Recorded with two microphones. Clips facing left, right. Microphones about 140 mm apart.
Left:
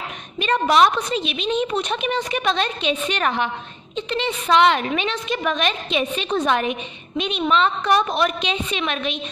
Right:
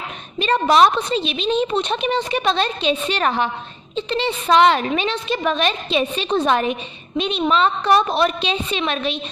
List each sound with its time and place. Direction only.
0.4 s a woman's voice: 35° right (ahead or behind)